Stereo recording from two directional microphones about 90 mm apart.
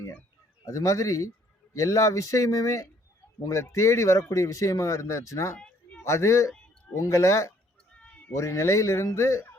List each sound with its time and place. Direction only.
0.6 s speech: 35° left (ahead or behind)
5.5 s a sound: 15° left (ahead or behind)
6.1 s speech: 35° left (ahead or behind)
8.0 s cat: 15° left (ahead or behind)
8.3 s speech: 35° left (ahead or behind)